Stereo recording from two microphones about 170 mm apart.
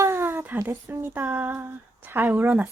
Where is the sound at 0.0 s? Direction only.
15° right (ahead or behind).